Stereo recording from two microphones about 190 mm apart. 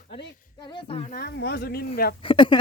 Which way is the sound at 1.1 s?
55° left (ahead or behind).